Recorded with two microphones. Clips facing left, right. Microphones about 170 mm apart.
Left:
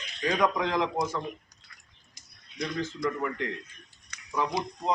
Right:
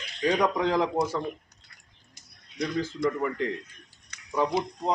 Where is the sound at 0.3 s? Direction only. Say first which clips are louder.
Right 2 dB; 35° right (ahead or behind).